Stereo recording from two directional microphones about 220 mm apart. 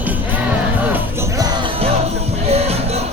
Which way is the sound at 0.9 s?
15° right (ahead or behind).